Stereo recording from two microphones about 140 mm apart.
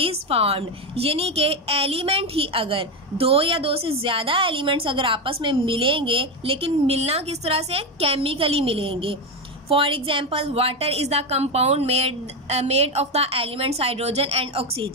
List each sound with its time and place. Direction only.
0.0 s a woman's voice: 45° right (ahead or behind)